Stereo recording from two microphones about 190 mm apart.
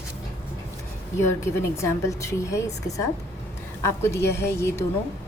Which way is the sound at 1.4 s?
15° left (ahead or behind).